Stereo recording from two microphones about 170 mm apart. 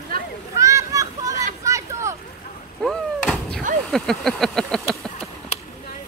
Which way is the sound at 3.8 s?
Centre (ahead or behind).